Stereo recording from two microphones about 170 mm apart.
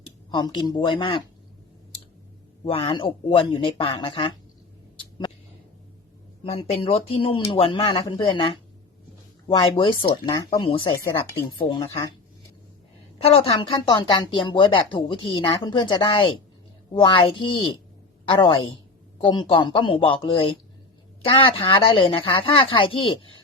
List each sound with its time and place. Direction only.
0.3 s speech: 25° left (ahead or behind)
2.6 s speech: 35° left (ahead or behind)
6.4 s speech: 35° left (ahead or behind)
13.1 s speech: 35° left (ahead or behind)